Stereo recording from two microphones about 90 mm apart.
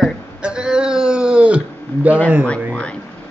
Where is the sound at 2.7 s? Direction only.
15° left (ahead or behind).